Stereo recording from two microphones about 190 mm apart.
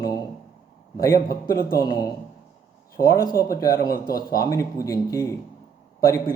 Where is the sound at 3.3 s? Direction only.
50° left (ahead or behind).